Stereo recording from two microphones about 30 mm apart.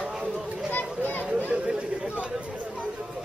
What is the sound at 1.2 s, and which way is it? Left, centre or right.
Chatter, right.